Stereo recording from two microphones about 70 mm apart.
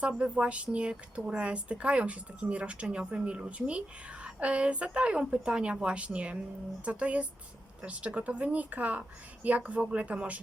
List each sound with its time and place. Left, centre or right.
0.1 s a woman's voice: centre